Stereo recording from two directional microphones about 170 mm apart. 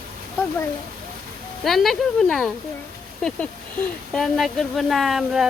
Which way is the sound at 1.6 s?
Centre (ahead or behind).